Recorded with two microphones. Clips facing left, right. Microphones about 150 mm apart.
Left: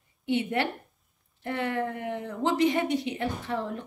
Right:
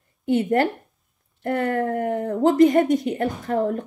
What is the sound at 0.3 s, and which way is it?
A woman's voice, 45° right (ahead or behind).